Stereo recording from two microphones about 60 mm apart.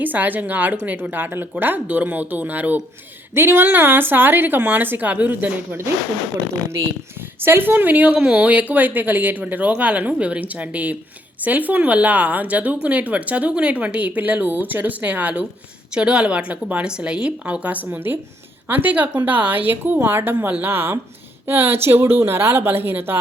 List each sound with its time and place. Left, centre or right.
0.0 s a woman's voice: right
3.3 s a woman's voice: right
7.4 s a woman's voice: right
17.9 s a woman's voice: right